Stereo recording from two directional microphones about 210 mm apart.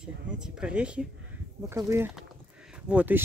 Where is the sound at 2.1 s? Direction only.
5° right (ahead or behind).